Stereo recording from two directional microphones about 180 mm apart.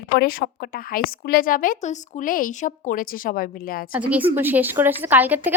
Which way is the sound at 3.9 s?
10° right (ahead or behind).